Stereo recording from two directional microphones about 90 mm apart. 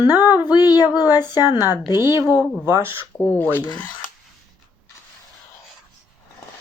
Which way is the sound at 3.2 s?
20° left (ahead or behind).